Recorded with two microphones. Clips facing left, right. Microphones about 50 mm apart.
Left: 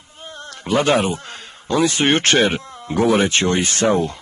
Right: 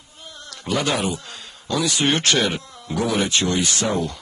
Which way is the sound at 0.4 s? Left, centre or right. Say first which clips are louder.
Left 5 dB; left.